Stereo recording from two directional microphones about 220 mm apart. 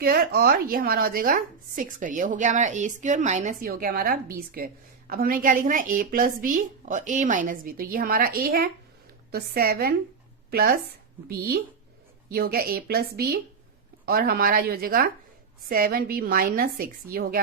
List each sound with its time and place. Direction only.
0.0 s a woman's voice: 45° right (ahead or behind)